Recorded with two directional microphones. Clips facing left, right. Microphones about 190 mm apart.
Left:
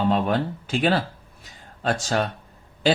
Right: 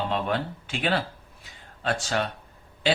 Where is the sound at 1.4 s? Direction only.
40° left (ahead or behind).